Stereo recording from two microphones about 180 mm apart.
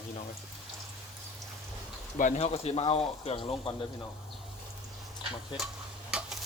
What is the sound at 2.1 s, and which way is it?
Speech, 45° left (ahead or behind).